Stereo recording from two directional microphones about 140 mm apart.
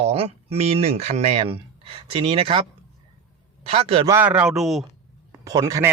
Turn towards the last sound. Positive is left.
turn(degrees=-20)  # may be behind; listen again after turning